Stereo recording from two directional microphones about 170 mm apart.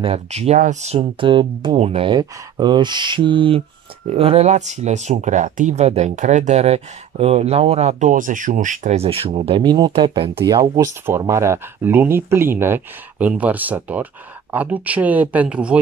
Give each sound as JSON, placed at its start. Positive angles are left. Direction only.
{"t": 0.0, "sound": "speech", "side_deg": -35}